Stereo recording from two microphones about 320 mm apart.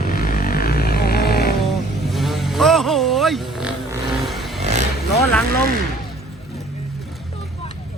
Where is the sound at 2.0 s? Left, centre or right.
Centre.